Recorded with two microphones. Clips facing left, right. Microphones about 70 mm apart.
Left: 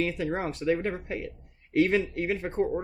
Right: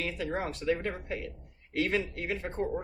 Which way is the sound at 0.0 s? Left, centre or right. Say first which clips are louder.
Left 4 dB; left.